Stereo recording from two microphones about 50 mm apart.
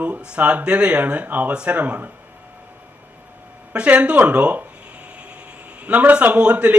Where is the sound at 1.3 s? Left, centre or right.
Right.